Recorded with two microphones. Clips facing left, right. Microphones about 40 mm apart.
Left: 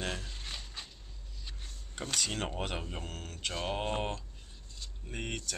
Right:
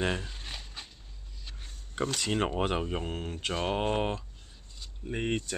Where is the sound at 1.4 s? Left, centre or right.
Centre.